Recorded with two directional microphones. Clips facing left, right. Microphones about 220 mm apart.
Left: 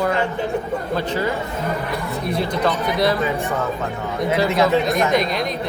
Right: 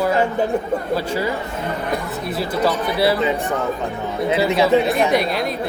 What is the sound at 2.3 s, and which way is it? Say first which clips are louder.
Speech: right 1 dB; 5° right (ahead or behind).